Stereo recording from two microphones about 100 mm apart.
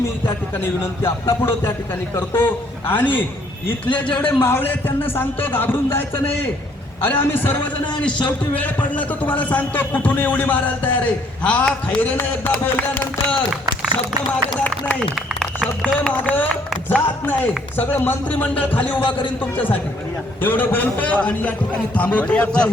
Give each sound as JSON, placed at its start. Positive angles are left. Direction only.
{"t": 0.5, "sound": "a man's voice", "side_deg": 25}
{"t": 15.1, "sound": "a sound", "side_deg": 0}
{"t": 16.0, "sound": "a man's voice", "side_deg": 15}
{"t": 19.0, "sound": "a man's voice", "side_deg": 55}
{"t": 19.4, "sound": "a man's voice", "side_deg": 15}